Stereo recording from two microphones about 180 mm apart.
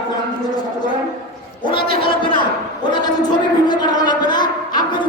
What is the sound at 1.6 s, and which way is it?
A man's voice, 30° left (ahead or behind).